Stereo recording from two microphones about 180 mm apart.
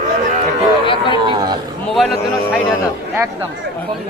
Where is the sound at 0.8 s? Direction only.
25° left (ahead or behind).